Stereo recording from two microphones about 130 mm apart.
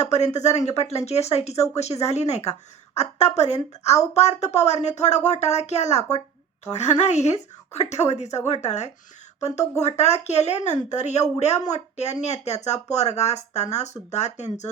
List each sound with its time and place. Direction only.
0.0 s a woman's voice: 60° left (ahead or behind)
10.0 s a woman's voice: 55° left (ahead or behind)